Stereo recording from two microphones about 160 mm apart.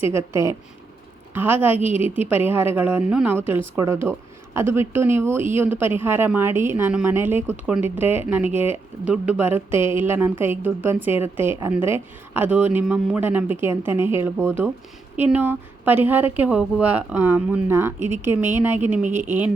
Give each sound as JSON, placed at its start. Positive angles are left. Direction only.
{"t": 0.1, "sound": "a woman's voice", "side_deg": -20}
{"t": 1.8, "sound": "a woman's voice", "side_deg": 40}
{"t": 2.5, "sound": "a woman's voice", "side_deg": -15}